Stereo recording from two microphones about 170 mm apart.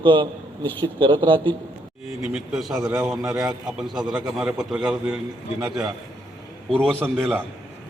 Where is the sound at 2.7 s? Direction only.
15° right (ahead or behind).